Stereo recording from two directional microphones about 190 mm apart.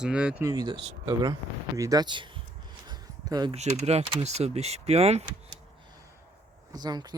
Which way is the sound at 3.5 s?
35° right (ahead or behind).